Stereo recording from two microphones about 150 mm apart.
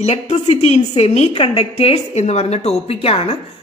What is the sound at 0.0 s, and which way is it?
A woman's voice, 45° left (ahead or behind).